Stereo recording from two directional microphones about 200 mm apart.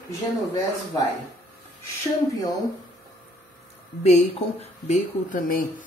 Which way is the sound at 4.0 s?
35° left (ahead or behind).